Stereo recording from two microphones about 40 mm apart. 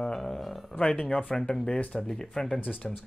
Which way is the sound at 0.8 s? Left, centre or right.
Left.